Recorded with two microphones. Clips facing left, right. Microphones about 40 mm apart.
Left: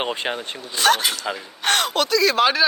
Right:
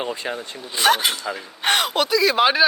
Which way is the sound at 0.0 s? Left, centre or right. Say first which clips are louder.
Left 2 dB; left.